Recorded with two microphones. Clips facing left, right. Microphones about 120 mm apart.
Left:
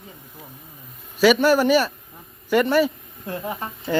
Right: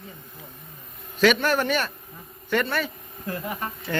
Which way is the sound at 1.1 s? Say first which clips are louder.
Left 5 dB; 5° left (ahead or behind).